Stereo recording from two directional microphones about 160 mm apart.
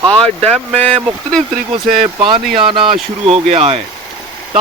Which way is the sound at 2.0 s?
35° right (ahead or behind).